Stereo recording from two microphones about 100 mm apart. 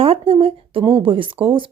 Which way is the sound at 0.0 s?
65° right (ahead or behind).